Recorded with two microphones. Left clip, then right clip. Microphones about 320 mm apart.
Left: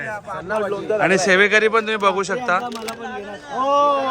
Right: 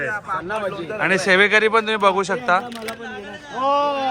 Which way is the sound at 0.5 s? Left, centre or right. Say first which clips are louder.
Left 4 dB; left.